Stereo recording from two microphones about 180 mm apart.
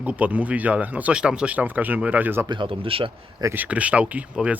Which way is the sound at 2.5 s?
25° right (ahead or behind).